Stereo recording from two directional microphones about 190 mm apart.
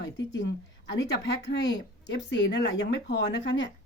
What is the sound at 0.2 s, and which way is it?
Speech, 75° left (ahead or behind).